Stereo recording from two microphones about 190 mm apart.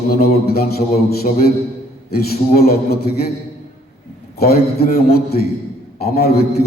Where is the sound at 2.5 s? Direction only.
55° left (ahead or behind).